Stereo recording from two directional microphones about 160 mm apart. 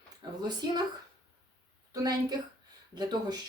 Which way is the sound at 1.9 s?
25° right (ahead or behind).